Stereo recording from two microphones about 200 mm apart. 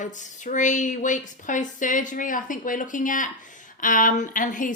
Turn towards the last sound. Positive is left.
turn(degrees=40)  # may be behind; listen again after turning